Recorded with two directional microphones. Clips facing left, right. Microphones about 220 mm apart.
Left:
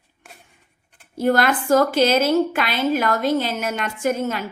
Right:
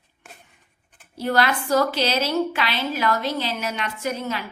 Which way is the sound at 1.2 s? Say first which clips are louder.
Left 4 dB; 50° left (ahead or behind).